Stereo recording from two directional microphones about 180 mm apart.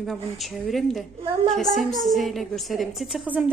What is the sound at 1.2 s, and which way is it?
Speech, 30° right (ahead or behind).